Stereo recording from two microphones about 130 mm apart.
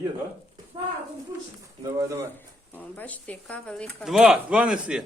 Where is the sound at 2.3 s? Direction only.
15° left (ahead or behind).